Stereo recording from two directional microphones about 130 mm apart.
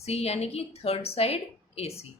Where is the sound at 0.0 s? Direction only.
55° left (ahead or behind).